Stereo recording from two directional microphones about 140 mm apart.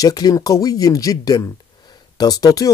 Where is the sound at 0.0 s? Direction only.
25° left (ahead or behind).